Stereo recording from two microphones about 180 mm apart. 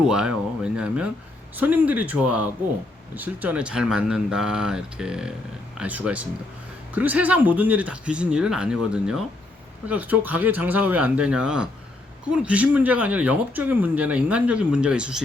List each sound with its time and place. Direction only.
0.0 s speech: 5° right (ahead or behind)